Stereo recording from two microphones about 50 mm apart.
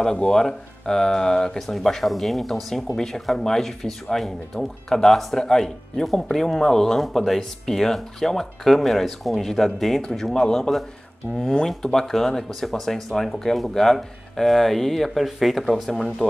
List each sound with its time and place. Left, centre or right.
0.0 s speech: centre